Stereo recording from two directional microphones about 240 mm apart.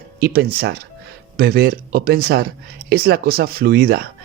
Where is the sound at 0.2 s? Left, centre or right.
Right.